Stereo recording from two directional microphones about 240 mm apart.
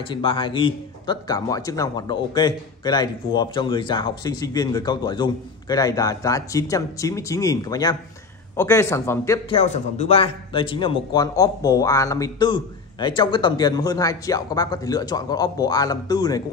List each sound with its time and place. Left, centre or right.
0.0 s speech: left
9.6 s speech: left